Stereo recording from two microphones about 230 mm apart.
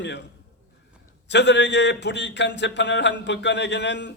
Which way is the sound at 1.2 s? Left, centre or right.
Left.